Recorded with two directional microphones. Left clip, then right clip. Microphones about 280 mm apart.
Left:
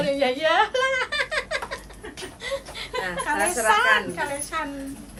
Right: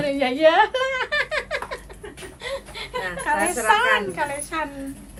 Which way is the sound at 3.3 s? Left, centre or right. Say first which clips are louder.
Right 2 dB; right.